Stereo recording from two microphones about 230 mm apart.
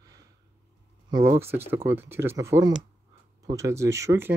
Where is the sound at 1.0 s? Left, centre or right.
Centre.